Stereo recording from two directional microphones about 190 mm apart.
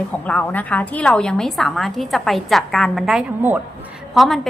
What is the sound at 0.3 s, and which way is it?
A woman's voice, 10° left (ahead or behind).